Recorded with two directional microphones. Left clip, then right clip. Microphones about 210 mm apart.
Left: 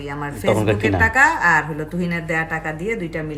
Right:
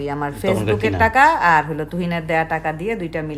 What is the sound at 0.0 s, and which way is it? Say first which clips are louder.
Speech: right 4 dB; 45° right (ahead or behind).